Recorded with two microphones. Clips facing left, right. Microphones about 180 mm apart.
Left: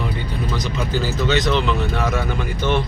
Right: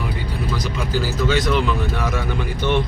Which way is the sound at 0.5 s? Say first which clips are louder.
Even; 10° right (ahead or behind).